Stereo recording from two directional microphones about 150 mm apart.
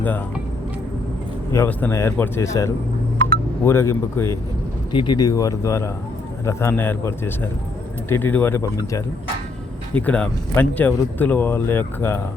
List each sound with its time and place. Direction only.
1.5 s speech: 15° left (ahead or behind)
4.9 s speech: 30° left (ahead or behind); by 12.2 s 15° left (ahead or behind)